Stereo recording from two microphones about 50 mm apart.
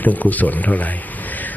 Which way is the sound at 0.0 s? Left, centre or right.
Left.